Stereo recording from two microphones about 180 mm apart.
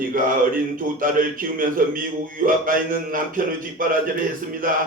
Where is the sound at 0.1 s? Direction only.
50° right (ahead or behind).